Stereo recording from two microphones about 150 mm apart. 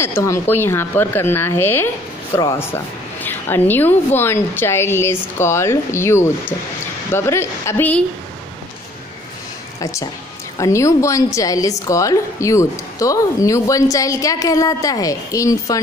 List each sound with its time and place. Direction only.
0.0 s a woman's voice: 20° left (ahead or behind)
9.8 s a woman's voice: 20° left (ahead or behind)